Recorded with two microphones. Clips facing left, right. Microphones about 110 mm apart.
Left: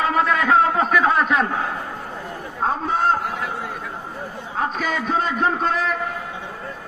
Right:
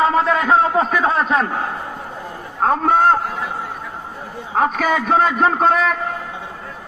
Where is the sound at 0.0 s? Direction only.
30° right (ahead or behind).